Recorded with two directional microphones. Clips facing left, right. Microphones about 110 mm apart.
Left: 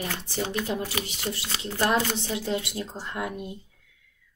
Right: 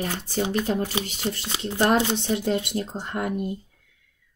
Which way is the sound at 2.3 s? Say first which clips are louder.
Right 4 dB; 50° right (ahead or behind).